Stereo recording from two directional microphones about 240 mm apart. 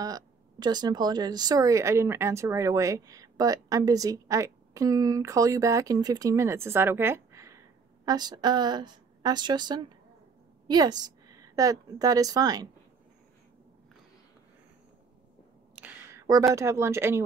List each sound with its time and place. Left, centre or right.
0.0 s a woman's voice: centre
15.8 s a woman's voice: centre